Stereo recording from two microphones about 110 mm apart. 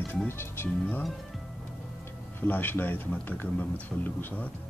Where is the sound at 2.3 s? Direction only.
15° left (ahead or behind).